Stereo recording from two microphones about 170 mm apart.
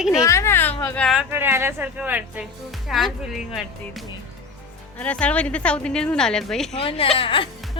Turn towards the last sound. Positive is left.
turn(degrees=30)  # may be behind; listen again after turning